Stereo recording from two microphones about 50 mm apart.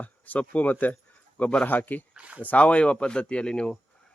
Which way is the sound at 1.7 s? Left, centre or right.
Left.